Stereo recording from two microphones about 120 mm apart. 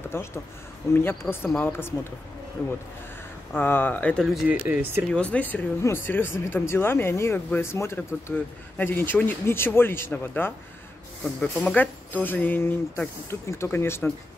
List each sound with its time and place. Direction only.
0.1 s speech: 20° left (ahead or behind)
1.5 s speech: 15° left (ahead or behind)
4.5 s speech: 15° right (ahead or behind)
5.1 s speech: 10° left (ahead or behind)